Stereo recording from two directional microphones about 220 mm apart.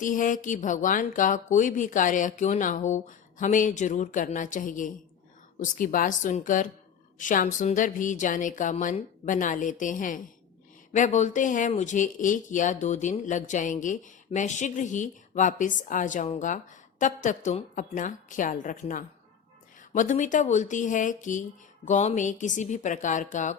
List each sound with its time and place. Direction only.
0.0 s speech: 35° left (ahead or behind)